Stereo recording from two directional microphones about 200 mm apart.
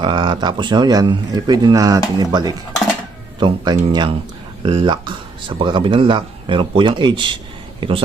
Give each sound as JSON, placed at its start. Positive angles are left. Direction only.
{"t": 0.0, "sound": "speech", "side_deg": -25}